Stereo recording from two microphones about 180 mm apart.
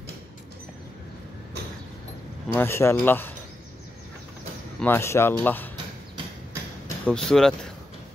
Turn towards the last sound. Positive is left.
turn(degrees=5)  # may be behind; listen again after turning